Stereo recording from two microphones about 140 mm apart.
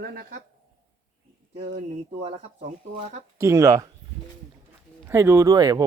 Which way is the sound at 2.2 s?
55° right (ahead or behind).